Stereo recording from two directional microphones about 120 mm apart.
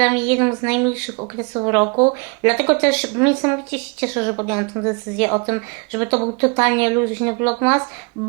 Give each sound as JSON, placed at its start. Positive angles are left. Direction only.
{"t": 0.0, "sound": "a woman's voice", "side_deg": -25}